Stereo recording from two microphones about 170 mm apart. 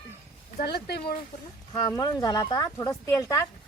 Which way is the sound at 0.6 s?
70° left (ahead or behind).